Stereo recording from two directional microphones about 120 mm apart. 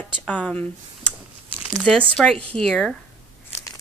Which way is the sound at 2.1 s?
5° left (ahead or behind).